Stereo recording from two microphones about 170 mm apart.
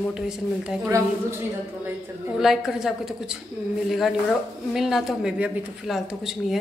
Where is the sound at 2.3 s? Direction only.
Centre (ahead or behind).